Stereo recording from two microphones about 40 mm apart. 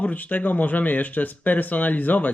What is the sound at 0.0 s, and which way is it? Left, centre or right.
Speech, left.